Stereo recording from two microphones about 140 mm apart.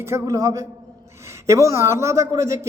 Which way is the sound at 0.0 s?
20° right (ahead or behind).